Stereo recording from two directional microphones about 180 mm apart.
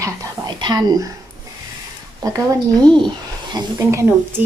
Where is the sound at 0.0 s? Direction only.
20° right (ahead or behind).